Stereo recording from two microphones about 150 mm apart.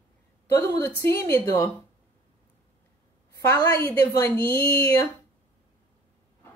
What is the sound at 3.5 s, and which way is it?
A woman's voice, 15° left (ahead or behind).